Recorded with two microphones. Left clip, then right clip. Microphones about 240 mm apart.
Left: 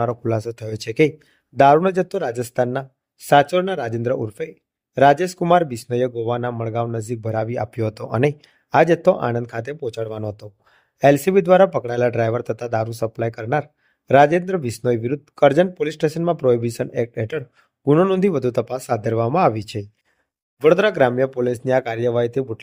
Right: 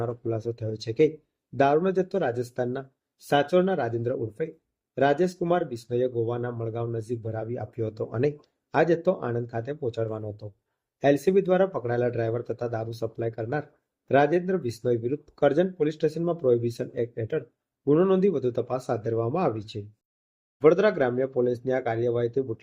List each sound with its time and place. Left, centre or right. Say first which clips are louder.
0.0 s speech: left 8 dB; left